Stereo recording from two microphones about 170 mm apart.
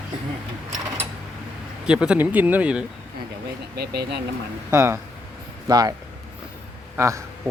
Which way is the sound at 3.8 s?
75° right (ahead or behind).